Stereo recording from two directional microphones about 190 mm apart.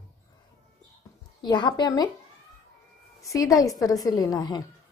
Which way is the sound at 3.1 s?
15° left (ahead or behind).